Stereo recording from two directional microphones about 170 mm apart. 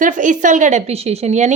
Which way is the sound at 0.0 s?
50° right (ahead or behind).